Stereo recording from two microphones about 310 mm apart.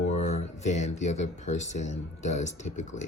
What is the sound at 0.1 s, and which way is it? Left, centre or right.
Speech, left.